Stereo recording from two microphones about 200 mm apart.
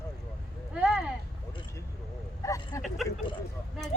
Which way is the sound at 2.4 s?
15° left (ahead or behind).